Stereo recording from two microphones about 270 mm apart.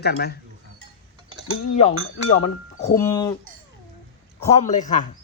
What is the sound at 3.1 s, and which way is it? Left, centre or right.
Speech, centre.